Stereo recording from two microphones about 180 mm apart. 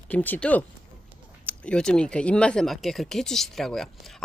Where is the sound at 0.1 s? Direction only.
10° left (ahead or behind).